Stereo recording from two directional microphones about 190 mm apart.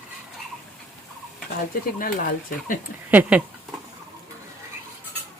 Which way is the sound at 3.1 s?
10° right (ahead or behind).